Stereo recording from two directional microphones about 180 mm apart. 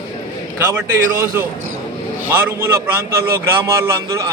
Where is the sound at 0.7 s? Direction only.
15° right (ahead or behind).